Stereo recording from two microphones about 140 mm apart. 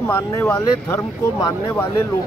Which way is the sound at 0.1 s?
15° left (ahead or behind).